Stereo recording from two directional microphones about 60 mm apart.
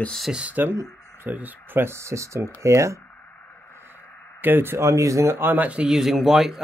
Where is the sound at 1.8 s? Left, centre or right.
Right.